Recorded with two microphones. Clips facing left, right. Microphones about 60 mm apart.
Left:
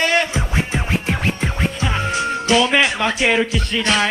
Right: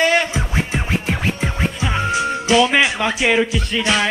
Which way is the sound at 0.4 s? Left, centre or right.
Centre.